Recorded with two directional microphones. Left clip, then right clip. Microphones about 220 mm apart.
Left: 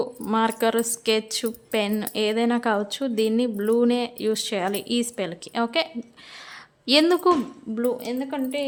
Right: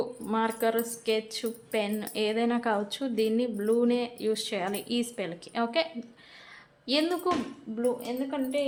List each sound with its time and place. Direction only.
0.0 s speech: 35° left (ahead or behind)
6.8 s speech: 40° left (ahead or behind)